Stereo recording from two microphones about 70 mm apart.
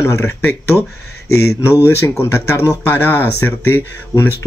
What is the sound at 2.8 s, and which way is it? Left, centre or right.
Speech, left.